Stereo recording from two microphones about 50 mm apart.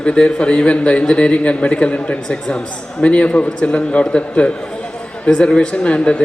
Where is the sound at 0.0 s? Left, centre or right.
Left.